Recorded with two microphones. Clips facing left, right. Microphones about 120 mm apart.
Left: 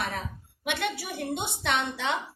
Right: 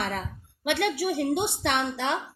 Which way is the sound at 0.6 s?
60° right (ahead or behind).